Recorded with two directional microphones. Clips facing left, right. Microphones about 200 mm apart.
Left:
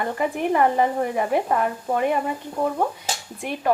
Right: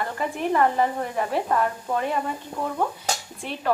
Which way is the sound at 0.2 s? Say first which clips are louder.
Left 2 dB; 15° left (ahead or behind).